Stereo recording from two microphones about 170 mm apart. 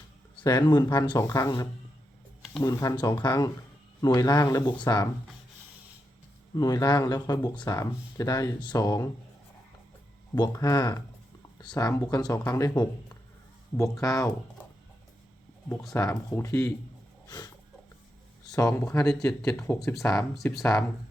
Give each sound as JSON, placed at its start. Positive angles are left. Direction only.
{"t": 0.4, "sound": "speech", "side_deg": 25}
{"t": 6.6, "sound": "speech", "side_deg": 20}
{"t": 10.3, "sound": "speech", "side_deg": 20}
{"t": 15.7, "sound": "speech", "side_deg": 0}
{"t": 16.0, "sound": "speech", "side_deg": 20}
{"t": 17.2, "sound": "a sound", "side_deg": 25}
{"t": 18.4, "sound": "speech", "side_deg": 20}
{"t": 18.9, "sound": "speech", "side_deg": 5}
{"t": 19.9, "sound": "speech", "side_deg": 0}